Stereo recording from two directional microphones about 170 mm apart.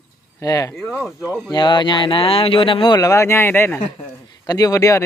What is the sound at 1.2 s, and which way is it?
Speech, 15° right (ahead or behind).